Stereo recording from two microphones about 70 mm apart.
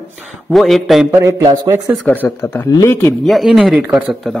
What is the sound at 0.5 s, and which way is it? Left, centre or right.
Speech, centre.